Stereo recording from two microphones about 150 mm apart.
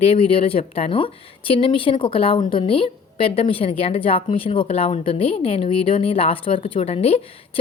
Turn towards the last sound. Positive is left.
turn(degrees=40)  # may be behind; listen again after turning